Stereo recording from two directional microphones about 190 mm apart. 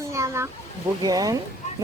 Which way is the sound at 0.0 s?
15° right (ahead or behind).